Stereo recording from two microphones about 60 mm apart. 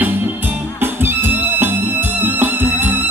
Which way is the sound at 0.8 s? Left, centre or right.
Right.